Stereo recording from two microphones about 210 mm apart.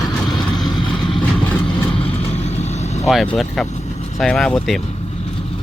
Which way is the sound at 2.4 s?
30° left (ahead or behind).